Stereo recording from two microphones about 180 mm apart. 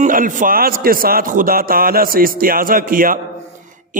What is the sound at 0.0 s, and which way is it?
Speech, 50° right (ahead or behind).